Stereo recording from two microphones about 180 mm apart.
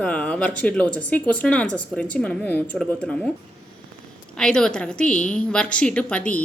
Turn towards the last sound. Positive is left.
turn(degrees=5)  # may be behind; listen again after turning